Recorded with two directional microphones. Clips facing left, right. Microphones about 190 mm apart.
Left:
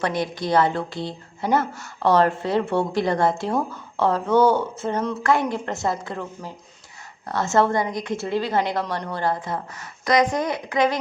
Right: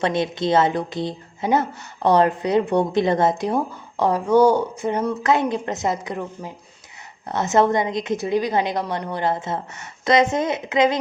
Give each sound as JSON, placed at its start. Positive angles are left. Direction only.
{"t": 0.0, "sound": "a woman's voice", "side_deg": -25}